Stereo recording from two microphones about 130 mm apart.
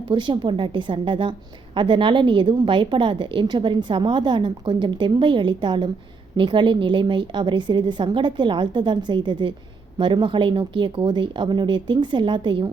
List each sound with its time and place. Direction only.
0.1 s a woman's voice: 40° right (ahead or behind)